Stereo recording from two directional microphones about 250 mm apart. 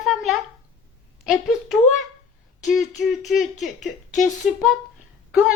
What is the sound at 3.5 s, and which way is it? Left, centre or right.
Speech, left.